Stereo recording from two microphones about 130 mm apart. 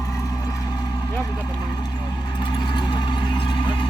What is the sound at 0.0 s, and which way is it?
Vehicle, 20° left (ahead or behind).